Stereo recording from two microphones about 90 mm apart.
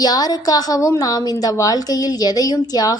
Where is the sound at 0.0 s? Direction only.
45° left (ahead or behind).